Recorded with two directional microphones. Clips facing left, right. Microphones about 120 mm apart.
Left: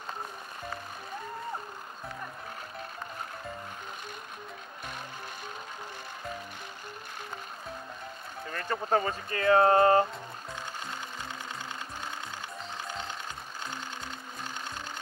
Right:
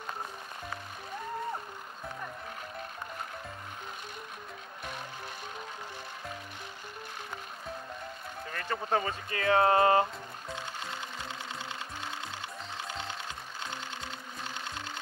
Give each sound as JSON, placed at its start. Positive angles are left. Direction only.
{"t": 8.5, "sound": "speech", "side_deg": 35}